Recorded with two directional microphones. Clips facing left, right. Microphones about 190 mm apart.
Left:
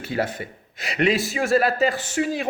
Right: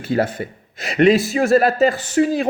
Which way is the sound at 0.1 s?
45° right (ahead or behind).